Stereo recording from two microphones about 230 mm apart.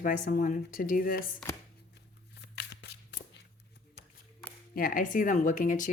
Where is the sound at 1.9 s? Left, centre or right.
Left.